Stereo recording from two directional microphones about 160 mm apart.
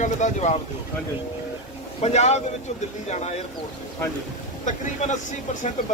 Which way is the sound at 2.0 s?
40° left (ahead or behind).